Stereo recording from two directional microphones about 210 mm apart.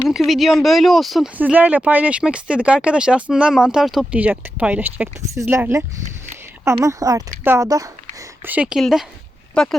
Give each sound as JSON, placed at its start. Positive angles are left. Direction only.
{"t": 0.1, "sound": "speech", "side_deg": 0}